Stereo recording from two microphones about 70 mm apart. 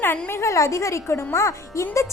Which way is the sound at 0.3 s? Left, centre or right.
Left.